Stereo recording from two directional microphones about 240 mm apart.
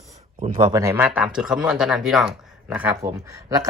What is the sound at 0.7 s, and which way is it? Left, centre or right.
Speech, centre.